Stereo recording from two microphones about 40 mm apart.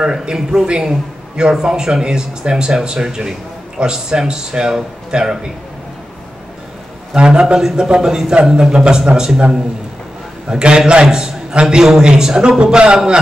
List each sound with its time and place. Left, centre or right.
0.2 s a man's voice: centre
7.2 s a man's voice: right